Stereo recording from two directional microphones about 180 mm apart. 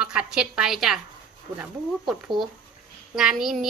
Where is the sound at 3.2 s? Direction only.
Centre (ahead or behind).